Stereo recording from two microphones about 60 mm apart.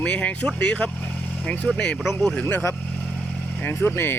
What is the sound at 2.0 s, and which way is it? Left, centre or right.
Speech, centre.